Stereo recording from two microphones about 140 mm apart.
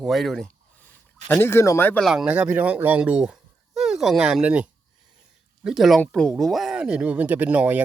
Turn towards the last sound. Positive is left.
turn(degrees=-10)  # may be behind; listen again after turning